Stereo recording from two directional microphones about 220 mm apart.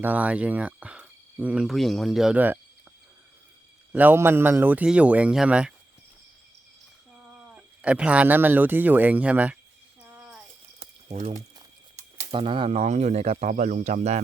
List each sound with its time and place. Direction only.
0.0 s speech: 5° right (ahead or behind)
3.9 s speech: 10° right (ahead or behind)
7.3 s speech: 5° right (ahead or behind)
10.0 s a sound: 10° right (ahead or behind)
10.8 s pigeon: 30° right (ahead or behind)
11.9 s speech: 30° right (ahead or behind)